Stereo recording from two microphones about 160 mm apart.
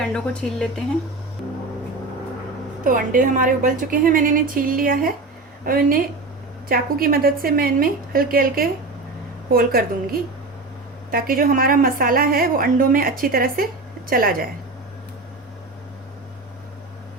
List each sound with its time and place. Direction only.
0.1 s a woman's voice: 5° left (ahead or behind)
2.8 s a woman's voice: 55° right (ahead or behind)